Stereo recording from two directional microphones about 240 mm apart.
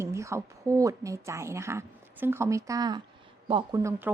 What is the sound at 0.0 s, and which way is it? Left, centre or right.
A woman's voice, centre.